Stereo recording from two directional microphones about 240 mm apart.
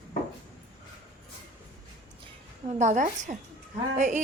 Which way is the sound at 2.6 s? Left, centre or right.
Right.